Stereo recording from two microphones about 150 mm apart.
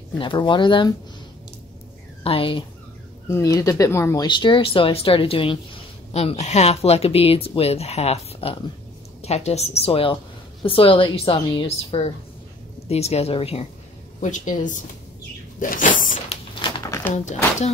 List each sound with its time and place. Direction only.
0.2 s speech: 35° left (ahead or behind)
2.2 s speech: 35° left (ahead or behind)
3.3 s speech: 20° left (ahead or behind)
4.3 s speech: 30° left (ahead or behind)
14.2 s speech: 60° left (ahead or behind)
15.6 s a sound: 65° left (ahead or behind)
16.8 s a sound: 20° left (ahead or behind)
17.1 s speech: 55° left (ahead or behind)